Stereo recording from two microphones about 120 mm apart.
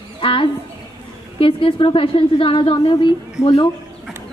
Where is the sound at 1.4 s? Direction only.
50° left (ahead or behind).